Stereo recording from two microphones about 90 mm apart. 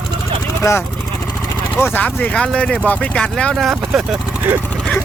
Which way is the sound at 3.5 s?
5° right (ahead or behind).